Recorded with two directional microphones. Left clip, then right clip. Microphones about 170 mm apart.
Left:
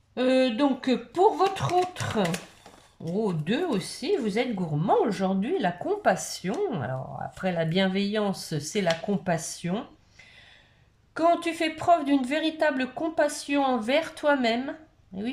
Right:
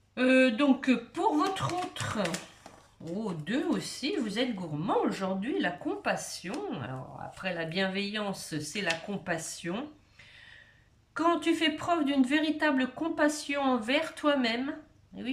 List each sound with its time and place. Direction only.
0.1 s speech: 25° left (ahead or behind)
3.4 s a woman's voice: 30° left (ahead or behind)
11.1 s a woman's voice: 30° left (ahead or behind)